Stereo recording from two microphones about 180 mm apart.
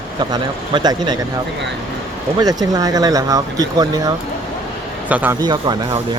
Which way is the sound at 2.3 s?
20° right (ahead or behind).